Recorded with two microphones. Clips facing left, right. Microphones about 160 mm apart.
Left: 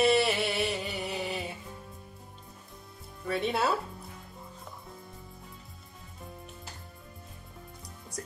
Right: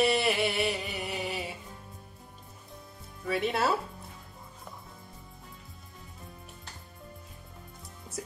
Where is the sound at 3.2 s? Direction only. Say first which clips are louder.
Even; centre (ahead or behind).